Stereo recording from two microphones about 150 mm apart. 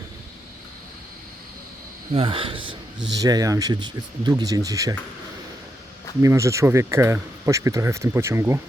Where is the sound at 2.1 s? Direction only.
35° right (ahead or behind).